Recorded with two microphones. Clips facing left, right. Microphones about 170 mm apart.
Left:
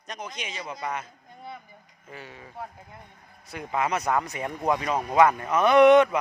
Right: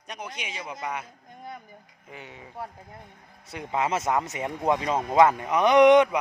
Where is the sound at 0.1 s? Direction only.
10° right (ahead or behind).